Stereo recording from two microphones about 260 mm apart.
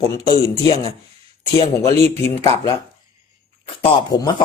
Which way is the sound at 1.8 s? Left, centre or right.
Centre.